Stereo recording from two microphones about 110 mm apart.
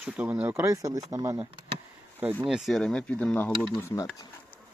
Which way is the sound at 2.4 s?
Centre (ahead or behind).